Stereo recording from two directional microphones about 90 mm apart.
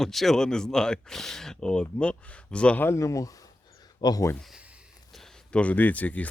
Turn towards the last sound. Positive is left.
turn(degrees=15)  # may be behind; listen again after turning